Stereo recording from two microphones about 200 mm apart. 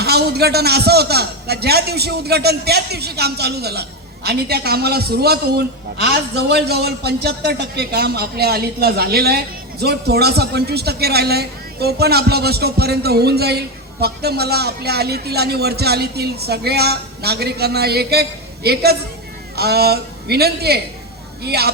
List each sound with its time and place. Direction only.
0.0 s a man's voice: 55° right (ahead or behind)